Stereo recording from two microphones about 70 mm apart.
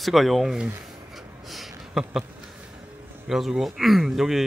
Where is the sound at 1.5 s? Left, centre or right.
Centre.